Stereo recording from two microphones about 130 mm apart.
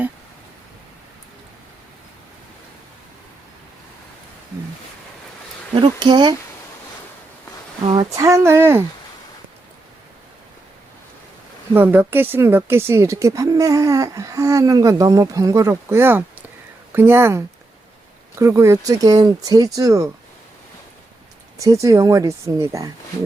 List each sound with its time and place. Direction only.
5.7 s speech: 40° right (ahead or behind)
7.9 s a woman's voice: 25° right (ahead or behind)
11.7 s a woman's voice: 15° right (ahead or behind)
21.6 s a woman's voice: 25° right (ahead or behind)